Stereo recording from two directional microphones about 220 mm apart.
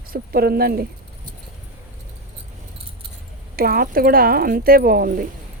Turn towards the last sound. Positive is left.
turn(degrees=-40)  # may be behind; listen again after turning